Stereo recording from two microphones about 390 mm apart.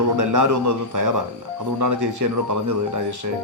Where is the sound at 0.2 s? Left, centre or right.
Right.